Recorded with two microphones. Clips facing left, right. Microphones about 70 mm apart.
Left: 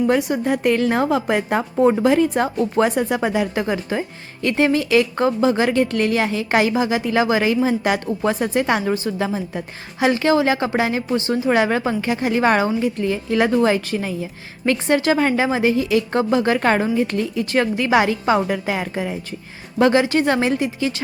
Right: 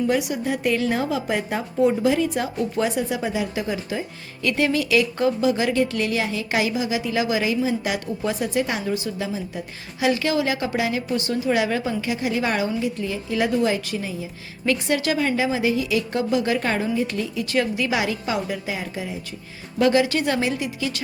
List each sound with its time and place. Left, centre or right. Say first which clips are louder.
0.1 s a woman's voice: left 4 dB; left
4.4 s a woman's voice: left 4 dB; left
19.8 s a woman's voice: left 3 dB; left